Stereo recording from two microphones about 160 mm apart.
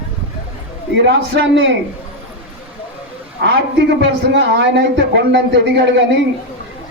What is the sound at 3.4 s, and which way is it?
A man's voice, 90° right.